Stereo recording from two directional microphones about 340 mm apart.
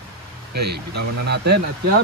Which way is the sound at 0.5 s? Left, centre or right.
Right.